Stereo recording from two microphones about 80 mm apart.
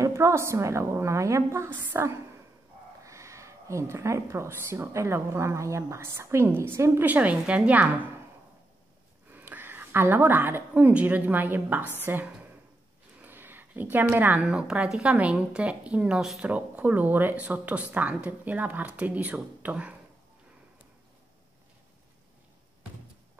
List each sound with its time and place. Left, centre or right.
0.0 s speech: right
1.7 s speech: right
3.0 s speech: right; by 8.0 s centre
9.3 s a woman's voice: right
13.2 s a sound: right
14.4 s a woman's voice: centre
16.4 s speech: centre